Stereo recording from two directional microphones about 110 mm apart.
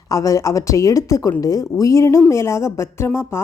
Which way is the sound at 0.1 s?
30° left (ahead or behind).